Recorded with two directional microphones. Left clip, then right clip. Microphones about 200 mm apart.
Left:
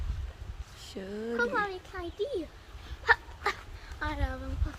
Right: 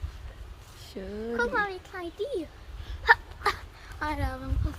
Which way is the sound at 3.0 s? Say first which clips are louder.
Right 4 dB; 35° right (ahead or behind).